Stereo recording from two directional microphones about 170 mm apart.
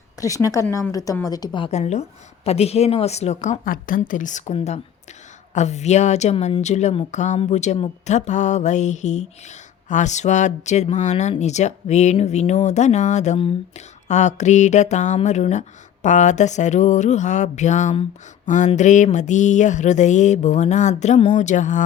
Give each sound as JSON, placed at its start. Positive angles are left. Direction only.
{"t": 0.2, "sound": "a woman's voice", "side_deg": 20}
{"t": 1.7, "sound": "a woman's voice", "side_deg": 40}